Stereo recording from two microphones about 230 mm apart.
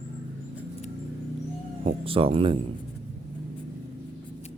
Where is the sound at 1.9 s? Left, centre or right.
Right.